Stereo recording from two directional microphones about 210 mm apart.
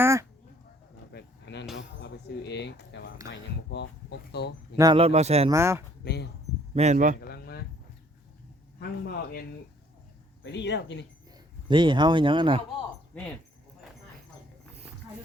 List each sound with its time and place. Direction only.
0.0 s duck: 15° right (ahead or behind)
1.1 s a sound: 55° left (ahead or behind)
3.2 s speech: 55° left (ahead or behind)
4.8 s speech: 25° right (ahead or behind)
5.5 s speech: 15° right (ahead or behind)
6.0 s speech: 50° left (ahead or behind)
6.7 s speech: 35° right (ahead or behind)
7.2 s a sound: 50° left (ahead or behind)
8.8 s speech: 45° left (ahead or behind)
10.4 s speech: 55° left (ahead or behind)
11.3 s speech: 20° right (ahead or behind)